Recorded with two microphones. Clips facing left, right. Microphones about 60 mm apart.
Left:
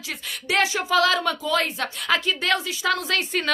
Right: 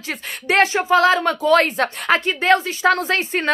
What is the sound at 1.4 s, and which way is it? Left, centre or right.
A woman's voice, right.